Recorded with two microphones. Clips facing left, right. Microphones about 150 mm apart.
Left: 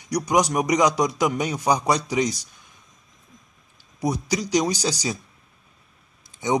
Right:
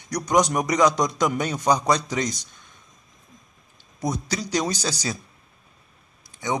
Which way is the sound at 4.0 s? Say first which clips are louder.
Left 3 dB; 10° left (ahead or behind).